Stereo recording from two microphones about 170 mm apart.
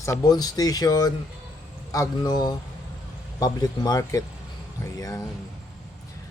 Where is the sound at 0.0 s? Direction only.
20° left (ahead or behind).